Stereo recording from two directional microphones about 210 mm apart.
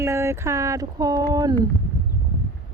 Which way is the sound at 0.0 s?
15° right (ahead or behind).